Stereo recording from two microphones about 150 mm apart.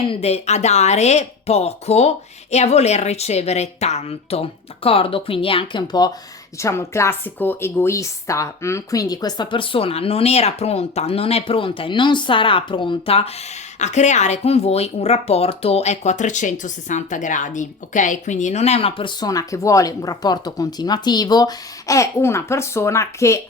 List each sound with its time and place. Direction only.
0.1 s speech: 45° left (ahead or behind)
6.6 s a woman's voice: 20° left (ahead or behind)